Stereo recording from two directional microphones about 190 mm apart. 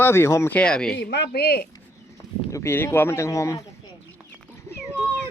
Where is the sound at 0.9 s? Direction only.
65° left (ahead or behind).